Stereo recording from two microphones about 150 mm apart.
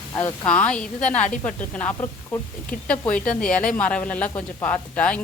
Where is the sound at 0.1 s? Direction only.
20° left (ahead or behind).